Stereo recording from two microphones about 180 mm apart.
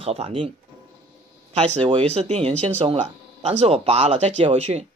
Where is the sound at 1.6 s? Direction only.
35° right (ahead or behind).